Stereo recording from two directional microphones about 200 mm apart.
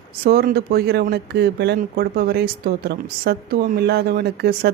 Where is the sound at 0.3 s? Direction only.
50° right (ahead or behind).